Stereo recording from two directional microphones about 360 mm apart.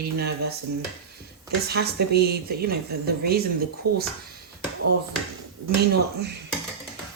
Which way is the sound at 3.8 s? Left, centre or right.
Right.